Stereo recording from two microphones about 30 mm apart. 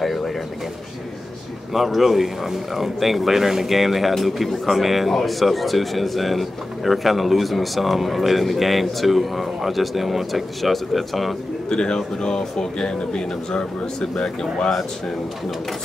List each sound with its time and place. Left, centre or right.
0.0 s bird: centre
1.7 s speech: centre
11.7 s speech: left
14.1 s speech: centre